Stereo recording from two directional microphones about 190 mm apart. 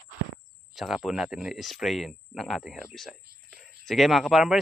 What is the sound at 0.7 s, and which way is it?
Speech, centre (ahead or behind).